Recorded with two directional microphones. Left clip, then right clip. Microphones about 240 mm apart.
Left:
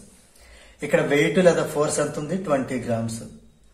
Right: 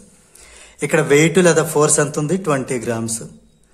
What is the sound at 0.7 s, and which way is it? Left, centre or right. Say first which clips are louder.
A man's voice: right 6 dB; right.